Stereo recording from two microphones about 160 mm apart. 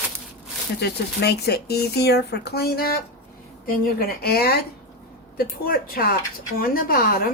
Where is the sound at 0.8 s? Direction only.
90° left; by 7.2 s 65° left (ahead or behind).